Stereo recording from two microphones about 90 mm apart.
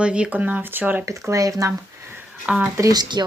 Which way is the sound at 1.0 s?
35° right (ahead or behind).